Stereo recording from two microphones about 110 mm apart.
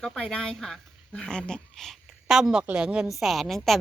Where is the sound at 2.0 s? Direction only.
5° right (ahead or behind).